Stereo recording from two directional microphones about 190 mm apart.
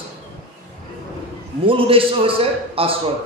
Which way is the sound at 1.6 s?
30° right (ahead or behind).